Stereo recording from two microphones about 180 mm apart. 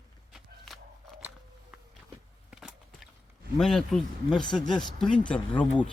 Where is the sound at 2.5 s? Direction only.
Centre (ahead or behind).